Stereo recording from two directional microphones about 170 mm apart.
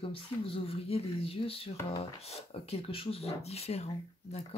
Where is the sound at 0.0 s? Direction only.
35° left (ahead or behind).